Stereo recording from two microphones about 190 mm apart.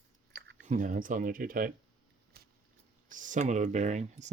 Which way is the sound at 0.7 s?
40° right (ahead or behind).